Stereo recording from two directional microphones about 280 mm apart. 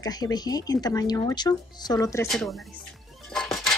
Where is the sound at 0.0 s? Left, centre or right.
Centre.